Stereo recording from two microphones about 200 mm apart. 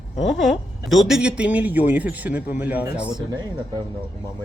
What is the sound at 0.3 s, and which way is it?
A man's voice, centre (ahead or behind).